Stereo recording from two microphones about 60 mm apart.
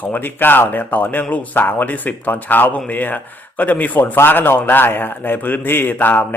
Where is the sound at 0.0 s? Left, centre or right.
Left.